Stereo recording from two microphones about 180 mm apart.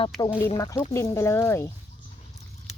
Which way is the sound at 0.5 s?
20° left (ahead or behind).